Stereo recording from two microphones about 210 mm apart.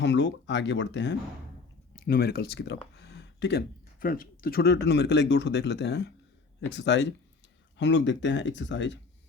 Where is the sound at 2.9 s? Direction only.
55° left (ahead or behind).